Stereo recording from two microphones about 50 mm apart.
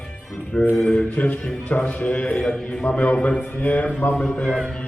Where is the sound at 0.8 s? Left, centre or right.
Left.